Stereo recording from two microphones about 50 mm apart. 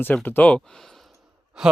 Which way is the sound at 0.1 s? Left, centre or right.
Left.